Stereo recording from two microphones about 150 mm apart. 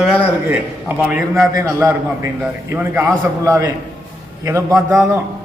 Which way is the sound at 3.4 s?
20° right (ahead or behind).